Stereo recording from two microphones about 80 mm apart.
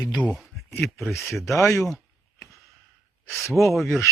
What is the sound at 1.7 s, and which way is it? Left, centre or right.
Speech, left.